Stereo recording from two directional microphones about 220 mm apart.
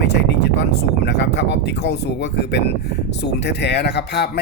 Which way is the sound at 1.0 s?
50° left (ahead or behind).